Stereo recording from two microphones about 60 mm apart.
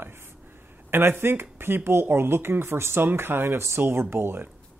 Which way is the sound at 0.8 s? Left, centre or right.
Right.